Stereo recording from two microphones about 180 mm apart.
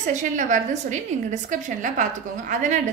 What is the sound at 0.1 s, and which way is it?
A woman's voice, 45° right (ahead or behind).